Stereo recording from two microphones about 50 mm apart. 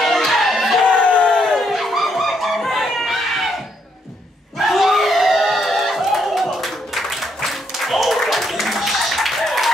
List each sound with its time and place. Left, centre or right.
0.0 s music: centre
1.1 s crowd: left
1.5 s music: centre
4.6 s a sound: centre